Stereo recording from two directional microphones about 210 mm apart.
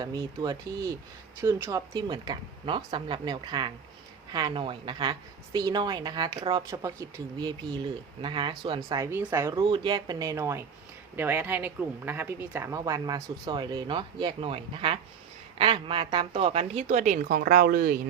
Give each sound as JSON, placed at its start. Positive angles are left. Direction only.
{"t": 0.0, "sound": "a woman's voice", "side_deg": -20}